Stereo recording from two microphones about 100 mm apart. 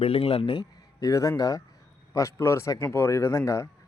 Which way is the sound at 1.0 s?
35° left (ahead or behind).